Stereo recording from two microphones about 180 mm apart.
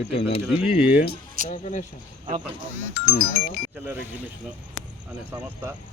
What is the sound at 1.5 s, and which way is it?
Speech, 35° left (ahead or behind).